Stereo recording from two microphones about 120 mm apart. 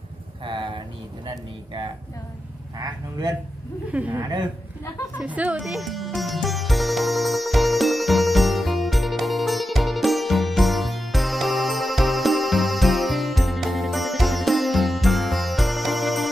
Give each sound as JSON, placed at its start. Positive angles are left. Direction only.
{"t": 0.5, "sound": "a sound", "side_deg": -45}
{"t": 2.8, "sound": "speech", "side_deg": -35}
{"t": 3.9, "sound": "a woman's voice", "side_deg": -10}
{"t": 4.2, "sound": "speech", "side_deg": -35}
{"t": 5.2, "sound": "music", "side_deg": -10}